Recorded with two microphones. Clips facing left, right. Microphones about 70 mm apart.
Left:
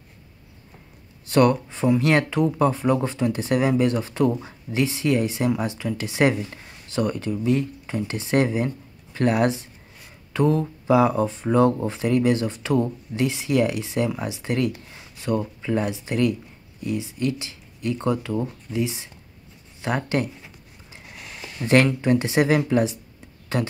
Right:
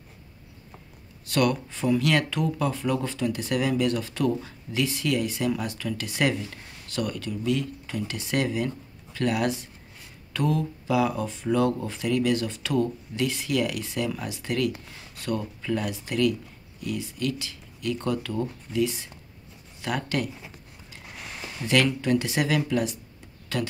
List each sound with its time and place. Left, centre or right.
1.3 s speech: left
21.6 s speech: left